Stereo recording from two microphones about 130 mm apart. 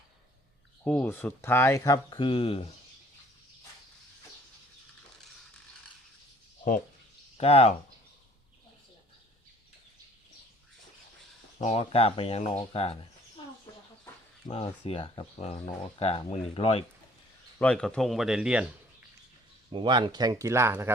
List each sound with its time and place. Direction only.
0.9 s speech: 15° left (ahead or behind); by 2.7 s 50° left (ahead or behind)
7.3 s speech: 50° left (ahead or behind)
11.6 s speech: 50° left (ahead or behind)
14.4 s speech: 50° left (ahead or behind)
17.6 s a man's voice: 10° left (ahead or behind); by 19.0 s 10° right (ahead or behind)
19.7 s speech: 35° right (ahead or behind); by 20.9 s 20° right (ahead or behind)